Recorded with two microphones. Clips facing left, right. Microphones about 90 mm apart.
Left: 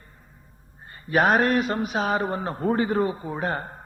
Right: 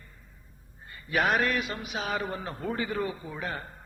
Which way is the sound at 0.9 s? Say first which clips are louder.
Left 6 dB; 35° left (ahead or behind).